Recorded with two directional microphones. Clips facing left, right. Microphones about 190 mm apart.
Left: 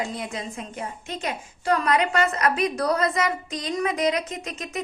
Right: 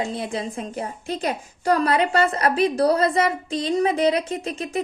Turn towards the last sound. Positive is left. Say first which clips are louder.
# right 6 dB
turn(degrees=-30)  # may be behind; listen again after turning